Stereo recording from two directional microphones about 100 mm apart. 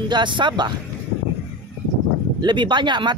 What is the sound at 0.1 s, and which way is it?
Speech, 50° right (ahead or behind).